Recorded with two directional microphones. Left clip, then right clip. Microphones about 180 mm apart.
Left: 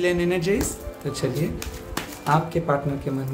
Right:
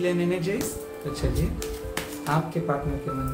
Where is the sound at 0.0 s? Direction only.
40° left (ahead or behind).